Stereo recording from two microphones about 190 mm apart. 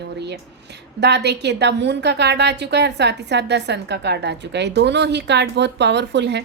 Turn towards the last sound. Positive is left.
turn(degrees=-65)  # may be behind; listen again after turning